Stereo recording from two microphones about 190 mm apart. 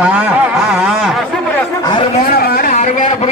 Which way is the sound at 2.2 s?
55° left (ahead or behind).